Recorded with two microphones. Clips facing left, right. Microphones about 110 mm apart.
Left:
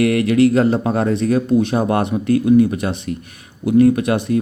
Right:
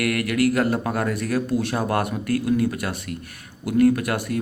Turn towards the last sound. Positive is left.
turn(degrees=20)  # may be behind; listen again after turning